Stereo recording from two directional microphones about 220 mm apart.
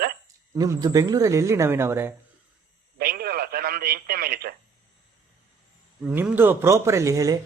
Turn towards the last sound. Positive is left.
turn(degrees=-15)  # may be behind; listen again after turning